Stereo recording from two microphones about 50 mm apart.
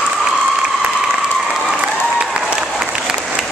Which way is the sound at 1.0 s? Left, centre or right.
Centre.